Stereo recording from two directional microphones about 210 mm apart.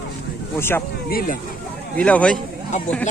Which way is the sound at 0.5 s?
10° left (ahead or behind).